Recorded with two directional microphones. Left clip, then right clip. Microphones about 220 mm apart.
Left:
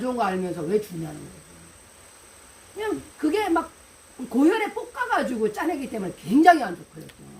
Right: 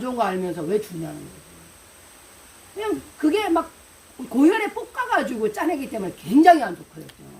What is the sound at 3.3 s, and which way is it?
Speech, 15° right (ahead or behind).